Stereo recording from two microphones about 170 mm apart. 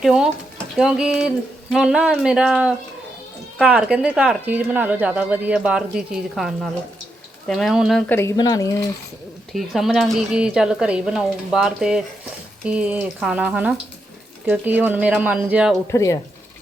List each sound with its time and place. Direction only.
0.0 s speech: 5° right (ahead or behind); by 8.9 s 20° left (ahead or behind)
9.5 s speech: centre (ahead or behind)
15.9 s speech: 20° left (ahead or behind)